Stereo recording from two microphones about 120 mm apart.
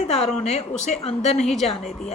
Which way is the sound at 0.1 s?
65° left (ahead or behind).